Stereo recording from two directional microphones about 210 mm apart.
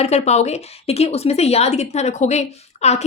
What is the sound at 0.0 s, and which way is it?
A woman's voice, 30° left (ahead or behind).